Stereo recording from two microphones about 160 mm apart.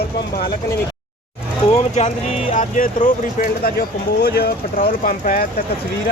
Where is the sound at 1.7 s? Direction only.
45° left (ahead or behind).